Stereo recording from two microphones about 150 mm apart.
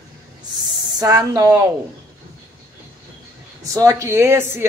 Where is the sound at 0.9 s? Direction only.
25° right (ahead or behind).